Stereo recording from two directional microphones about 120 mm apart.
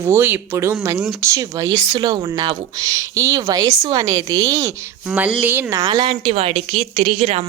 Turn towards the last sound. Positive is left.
turn(degrees=-60)  # may be behind; listen again after turning